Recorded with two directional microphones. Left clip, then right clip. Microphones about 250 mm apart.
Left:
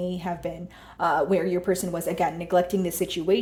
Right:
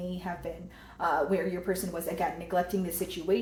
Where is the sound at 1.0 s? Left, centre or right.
Left.